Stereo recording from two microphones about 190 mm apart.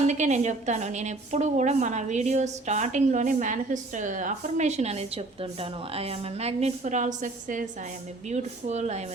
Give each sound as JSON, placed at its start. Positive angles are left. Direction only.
{"t": 0.0, "sound": "a woman's voice", "side_deg": -35}